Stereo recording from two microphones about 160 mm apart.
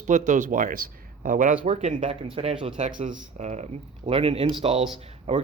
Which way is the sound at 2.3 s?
35° right (ahead or behind).